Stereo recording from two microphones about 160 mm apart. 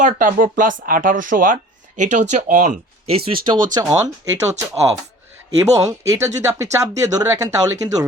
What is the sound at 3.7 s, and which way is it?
A woman's voice, 20° right (ahead or behind).